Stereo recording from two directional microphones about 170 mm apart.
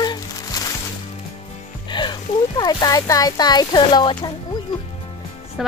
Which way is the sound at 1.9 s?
25° left (ahead or behind).